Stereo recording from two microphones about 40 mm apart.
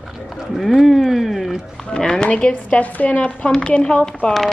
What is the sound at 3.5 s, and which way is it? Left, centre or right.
Speech, left.